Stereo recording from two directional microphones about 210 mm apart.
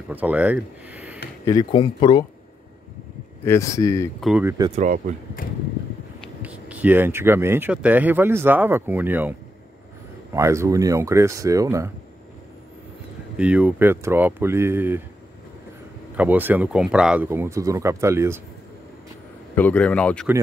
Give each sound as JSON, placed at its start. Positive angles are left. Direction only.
{"t": 0.1, "sound": "speech", "side_deg": -10}
{"t": 1.4, "sound": "speech", "side_deg": 20}
{"t": 3.4, "sound": "speech", "side_deg": 15}
{"t": 4.2, "sound": "speech", "side_deg": -5}
{"t": 4.7, "sound": "speech", "side_deg": -35}
{"t": 6.2, "sound": "speech", "side_deg": -5}
{"t": 10.3, "sound": "speech", "side_deg": -15}
{"t": 13.4, "sound": "speech", "side_deg": -5}
{"t": 16.2, "sound": "speech", "side_deg": -10}
{"t": 19.5, "sound": "speech", "side_deg": 5}